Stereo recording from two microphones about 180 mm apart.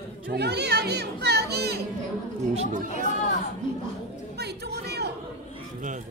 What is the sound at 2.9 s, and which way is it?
Chatter, 40° left (ahead or behind).